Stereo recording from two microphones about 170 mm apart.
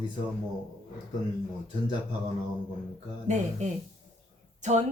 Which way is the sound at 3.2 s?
45° right (ahead or behind).